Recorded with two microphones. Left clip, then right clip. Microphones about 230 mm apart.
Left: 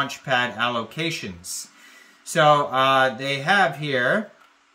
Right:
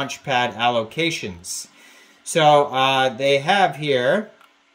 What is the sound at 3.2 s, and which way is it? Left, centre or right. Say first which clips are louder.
Speech: right 3 dB; left.